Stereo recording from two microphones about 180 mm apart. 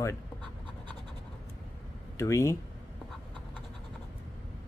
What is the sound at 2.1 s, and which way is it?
Speech, 15° left (ahead or behind).